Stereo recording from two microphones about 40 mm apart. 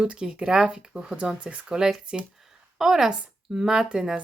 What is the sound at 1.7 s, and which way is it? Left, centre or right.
A woman's voice, centre.